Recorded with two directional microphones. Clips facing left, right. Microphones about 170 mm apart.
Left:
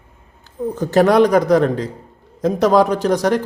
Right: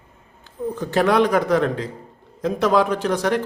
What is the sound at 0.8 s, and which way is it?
A man's voice, 40° left (ahead or behind).